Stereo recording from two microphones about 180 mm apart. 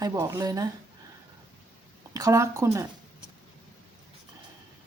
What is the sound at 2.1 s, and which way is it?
Speech, 20° right (ahead or behind).